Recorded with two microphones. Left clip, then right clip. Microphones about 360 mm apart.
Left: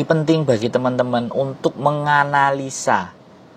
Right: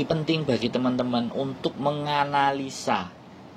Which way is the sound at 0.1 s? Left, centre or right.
Left.